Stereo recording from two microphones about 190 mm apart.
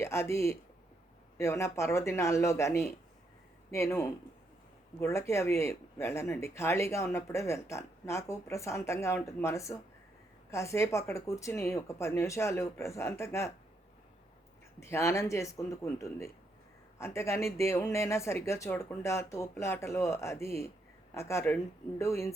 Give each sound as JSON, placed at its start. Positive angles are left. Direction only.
{"t": 0.0, "sound": "speech", "side_deg": 15}
{"t": 14.8, "sound": "speech", "side_deg": 15}